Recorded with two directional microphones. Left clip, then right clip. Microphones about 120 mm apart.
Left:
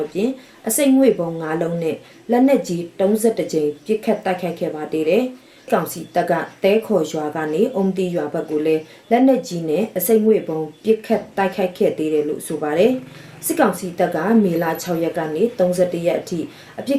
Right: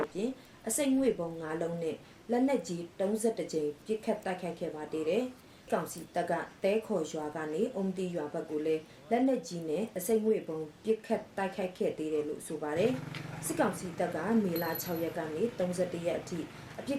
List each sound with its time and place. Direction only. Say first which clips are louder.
0.1 s speech: left 14 dB; centre (ahead or behind)